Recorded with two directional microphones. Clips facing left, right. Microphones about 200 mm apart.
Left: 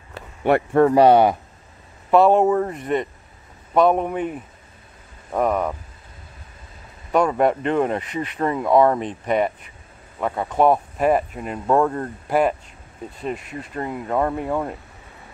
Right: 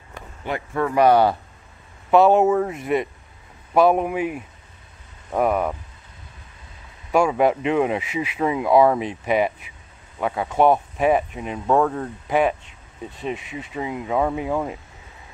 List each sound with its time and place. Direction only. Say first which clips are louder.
0.4 s speech: left 9 dB; 60° left (ahead or behind)
0.8 s speech: left 1 dB; 30° left (ahead or behind)
2.0 s speech: even; centre (ahead or behind)
7.1 s speech: even; 5° right (ahead or behind)